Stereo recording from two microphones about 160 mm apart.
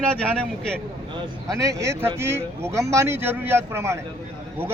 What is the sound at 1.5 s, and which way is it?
Speech, 20° right (ahead or behind).